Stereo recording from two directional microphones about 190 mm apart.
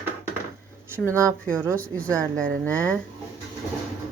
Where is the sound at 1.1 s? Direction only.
15° right (ahead or behind).